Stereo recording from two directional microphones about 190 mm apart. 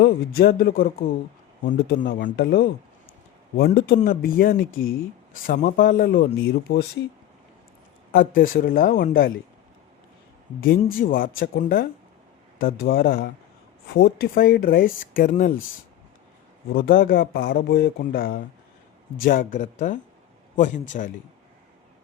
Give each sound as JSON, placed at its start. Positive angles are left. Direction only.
{"t": 0.0, "sound": "speech", "side_deg": 55}
{"t": 6.7, "sound": "speech", "side_deg": 60}
{"t": 8.4, "sound": "speech", "side_deg": 50}
{"t": 10.6, "sound": "speech", "side_deg": 50}
{"t": 16.7, "sound": "speech", "side_deg": 50}